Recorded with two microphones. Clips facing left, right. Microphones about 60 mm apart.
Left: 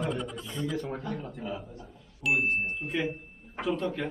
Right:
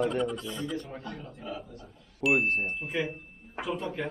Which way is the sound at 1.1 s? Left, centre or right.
Left.